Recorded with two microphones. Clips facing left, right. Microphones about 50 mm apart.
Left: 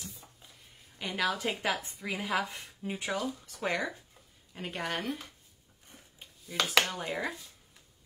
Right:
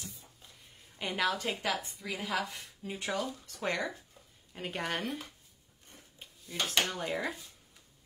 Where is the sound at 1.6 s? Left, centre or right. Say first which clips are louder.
Left 2 dB; centre.